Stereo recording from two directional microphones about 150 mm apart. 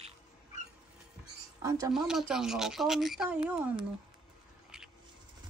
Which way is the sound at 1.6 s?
25° right (ahead or behind).